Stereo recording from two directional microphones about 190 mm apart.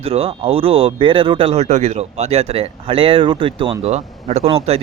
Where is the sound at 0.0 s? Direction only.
30° right (ahead or behind).